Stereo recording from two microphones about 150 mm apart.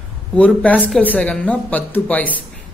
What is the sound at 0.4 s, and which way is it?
Speech, 10° left (ahead or behind).